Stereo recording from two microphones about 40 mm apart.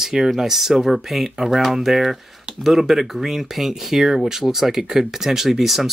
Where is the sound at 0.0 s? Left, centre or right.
Centre.